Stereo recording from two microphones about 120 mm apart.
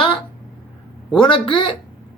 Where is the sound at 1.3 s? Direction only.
40° left (ahead or behind).